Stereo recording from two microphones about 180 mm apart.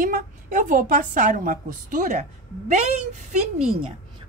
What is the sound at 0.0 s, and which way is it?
A woman's voice, 50° right (ahead or behind).